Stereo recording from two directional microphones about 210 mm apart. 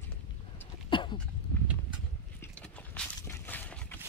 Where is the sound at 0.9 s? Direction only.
25° left (ahead or behind).